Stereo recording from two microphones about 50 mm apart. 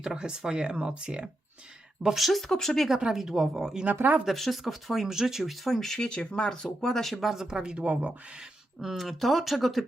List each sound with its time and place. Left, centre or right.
0.0 s speech: centre
2.0 s speech: centre
3.1 s speech: centre
3.9 s speech: right
4.3 s speech: centre
7.4 s speech: centre
8.8 s speech: centre